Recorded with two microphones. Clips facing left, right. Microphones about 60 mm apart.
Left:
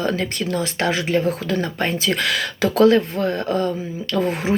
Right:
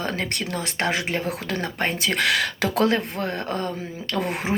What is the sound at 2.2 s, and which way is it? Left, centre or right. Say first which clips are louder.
Speech: left 1 dB; right.